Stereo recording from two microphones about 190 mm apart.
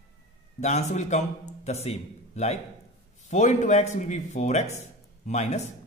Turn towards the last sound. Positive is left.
turn(degrees=35)  # may be behind; listen again after turning